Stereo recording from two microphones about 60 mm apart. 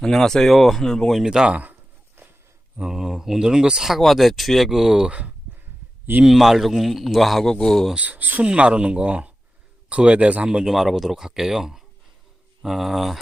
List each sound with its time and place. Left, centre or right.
0.0 s speech: centre
1.2 s speech: centre
2.2 s a sound: right
2.9 s speech: centre
6.2 s speech: centre
7.9 s speech: right
10.7 s speech: centre